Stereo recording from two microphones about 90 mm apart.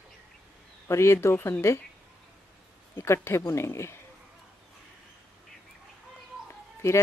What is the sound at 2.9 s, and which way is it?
Speech, 30° left (ahead or behind).